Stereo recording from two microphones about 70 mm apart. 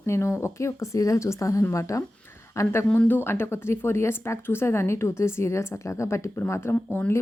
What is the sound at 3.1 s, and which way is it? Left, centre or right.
A woman's voice, left.